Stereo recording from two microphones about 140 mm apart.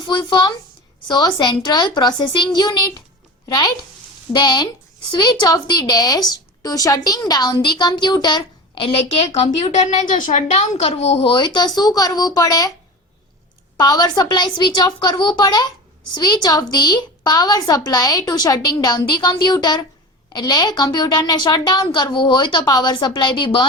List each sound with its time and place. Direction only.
0.0 s a woman's voice: 30° left (ahead or behind)
4.3 s a woman's voice: 30° left (ahead or behind)
9.4 s a woman's voice: 50° left (ahead or behind); by 12.7 s 25° left (ahead or behind)
13.7 s a woman's voice: 30° left (ahead or behind)